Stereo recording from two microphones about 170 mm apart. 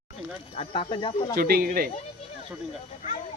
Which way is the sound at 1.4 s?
60° right (ahead or behind).